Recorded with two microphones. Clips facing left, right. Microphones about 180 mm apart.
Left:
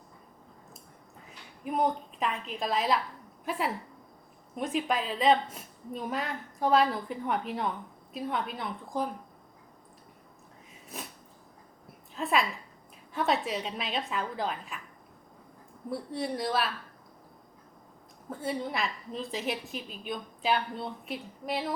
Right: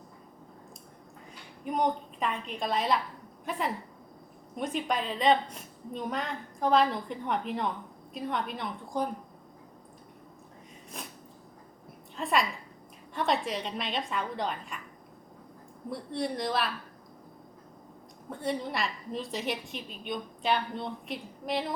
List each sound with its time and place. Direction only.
1.6 s a woman's voice: 5° left (ahead or behind)
12.1 s a woman's voice: centre (ahead or behind)
15.9 s a woman's voice: 5° left (ahead or behind)
18.3 s a woman's voice: centre (ahead or behind)